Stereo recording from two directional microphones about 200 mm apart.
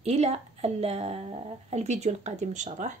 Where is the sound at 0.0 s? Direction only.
30° right (ahead or behind).